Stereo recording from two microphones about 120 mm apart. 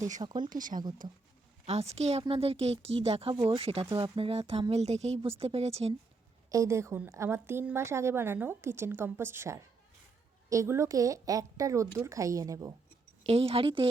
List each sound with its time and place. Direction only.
0.2 s speech: 35° right (ahead or behind)
0.5 s speech: 90° right
1.6 s speech: 65° right (ahead or behind)
6.5 s a woman's voice: 25° right (ahead or behind)
13.2 s speech: 55° right (ahead or behind)